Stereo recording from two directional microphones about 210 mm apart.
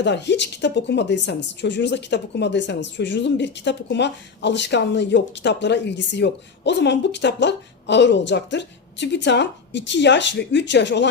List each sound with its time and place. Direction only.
0.0 s a woman's voice: 55° left (ahead or behind)